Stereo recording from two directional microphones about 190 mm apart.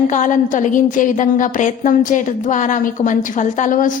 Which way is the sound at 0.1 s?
40° left (ahead or behind).